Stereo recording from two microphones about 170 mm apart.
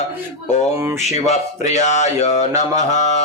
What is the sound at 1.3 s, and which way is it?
Speech, 45° left (ahead or behind).